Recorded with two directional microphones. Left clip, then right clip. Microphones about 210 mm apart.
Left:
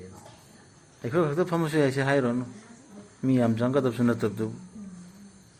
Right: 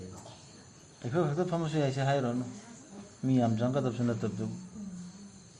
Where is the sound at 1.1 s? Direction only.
55° left (ahead or behind).